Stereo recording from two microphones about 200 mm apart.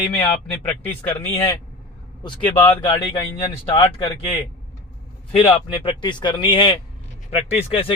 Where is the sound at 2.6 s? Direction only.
20° left (ahead or behind).